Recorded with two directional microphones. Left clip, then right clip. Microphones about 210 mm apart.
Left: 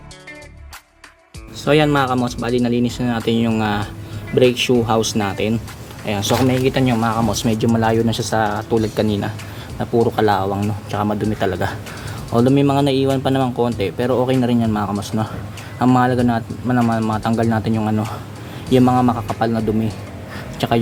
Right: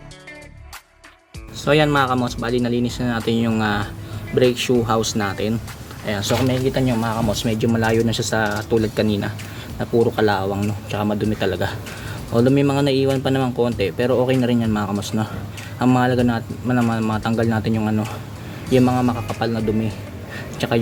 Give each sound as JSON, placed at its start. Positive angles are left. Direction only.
{"t": 1.6, "sound": "speech", "side_deg": 10}
{"t": 7.7, "sound": "speech", "side_deg": 0}
{"t": 20.3, "sound": "a sound", "side_deg": 10}